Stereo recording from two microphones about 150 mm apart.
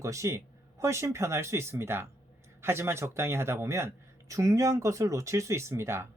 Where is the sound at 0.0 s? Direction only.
20° right (ahead or behind).